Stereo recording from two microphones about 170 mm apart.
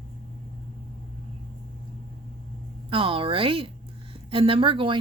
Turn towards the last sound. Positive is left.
turn(degrees=-30)  # may be behind; listen again after turning